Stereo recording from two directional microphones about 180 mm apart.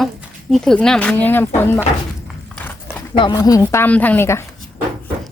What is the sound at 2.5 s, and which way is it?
Horse, 10° left (ahead or behind).